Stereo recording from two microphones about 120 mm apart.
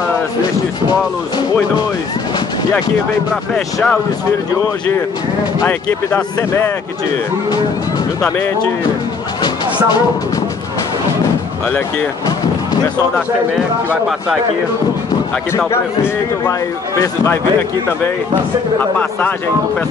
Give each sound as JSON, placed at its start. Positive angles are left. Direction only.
{"t": 3.5, "sound": "speech", "side_deg": 5}
{"t": 5.7, "sound": "speech", "side_deg": 20}
{"t": 17.0, "sound": "a man's voice", "side_deg": 25}
{"t": 18.8, "sound": "speech", "side_deg": 15}